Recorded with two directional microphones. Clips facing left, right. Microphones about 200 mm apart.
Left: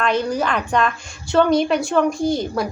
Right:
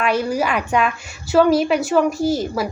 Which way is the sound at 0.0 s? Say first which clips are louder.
Right 1 dB; 10° right (ahead or behind).